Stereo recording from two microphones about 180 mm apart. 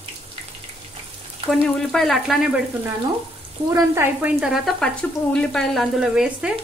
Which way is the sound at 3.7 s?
10° right (ahead or behind).